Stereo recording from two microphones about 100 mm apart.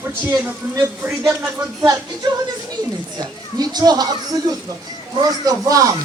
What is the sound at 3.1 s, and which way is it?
Speech, 40° right (ahead or behind).